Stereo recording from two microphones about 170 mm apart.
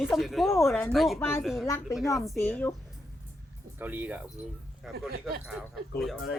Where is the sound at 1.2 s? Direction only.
15° left (ahead or behind).